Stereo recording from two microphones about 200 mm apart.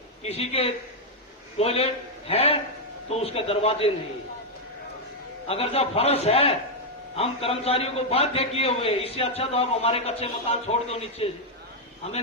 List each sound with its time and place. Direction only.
0.2 s a man's voice: 30° left (ahead or behind)
5.5 s a man's voice: 30° left (ahead or behind)